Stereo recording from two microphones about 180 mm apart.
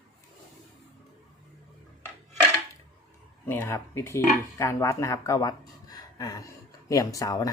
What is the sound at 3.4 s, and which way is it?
Speech, 10° left (ahead or behind).